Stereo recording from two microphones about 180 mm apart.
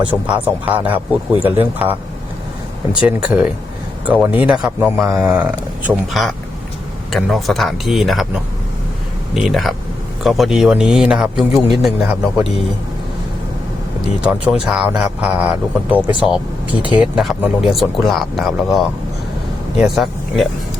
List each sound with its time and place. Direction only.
0.3 s speech: 10° right (ahead or behind)
3.1 s speech: 5° right (ahead or behind)
9.3 s speech: centre (ahead or behind)
14.2 s speech: 5° right (ahead or behind)